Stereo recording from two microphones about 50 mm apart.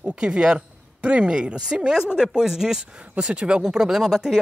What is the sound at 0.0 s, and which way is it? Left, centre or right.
A woman's voice, right.